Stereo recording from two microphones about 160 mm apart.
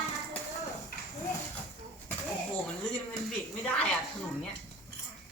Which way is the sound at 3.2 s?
5° left (ahead or behind).